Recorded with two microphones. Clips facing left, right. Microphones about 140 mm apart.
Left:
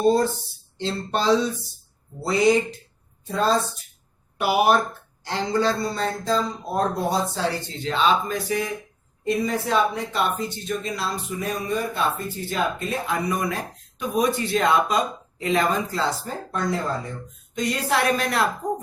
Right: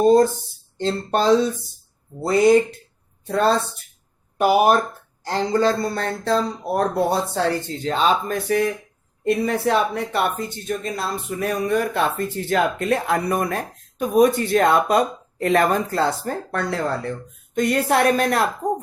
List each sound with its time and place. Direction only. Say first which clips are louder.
0.0 s a woman's voice: right 5 dB; 45° right (ahead or behind)
3.2 s speech: right 3 dB; 65° right (ahead or behind)
4.4 s speech: right 3 dB; 45° right (ahead or behind); by 7.4 s 65° right (ahead or behind)
7.8 s a woman's voice: even; 45° right (ahead or behind); by 17.1 s 75° right (ahead or behind)
17.5 s a woman's voice: right 5 dB; 55° right (ahead or behind)